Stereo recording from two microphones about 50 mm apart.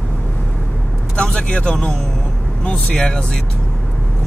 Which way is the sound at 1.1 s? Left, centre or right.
Left.